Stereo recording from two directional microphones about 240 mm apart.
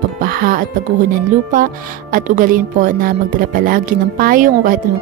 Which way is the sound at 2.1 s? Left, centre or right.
Right.